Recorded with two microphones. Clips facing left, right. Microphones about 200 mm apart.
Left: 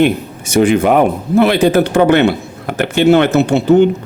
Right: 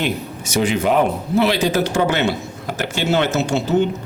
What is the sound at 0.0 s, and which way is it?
A man's voice, 55° left (ahead or behind).